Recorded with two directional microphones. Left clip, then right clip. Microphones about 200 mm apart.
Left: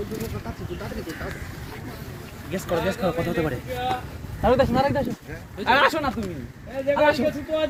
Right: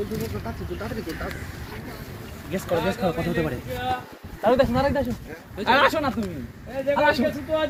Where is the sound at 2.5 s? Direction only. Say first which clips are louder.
Even; 10° left (ahead or behind).